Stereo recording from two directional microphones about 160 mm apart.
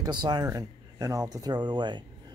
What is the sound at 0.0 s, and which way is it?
Speech, 30° right (ahead or behind).